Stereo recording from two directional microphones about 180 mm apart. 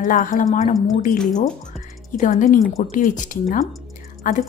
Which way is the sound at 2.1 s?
45° left (ahead or behind).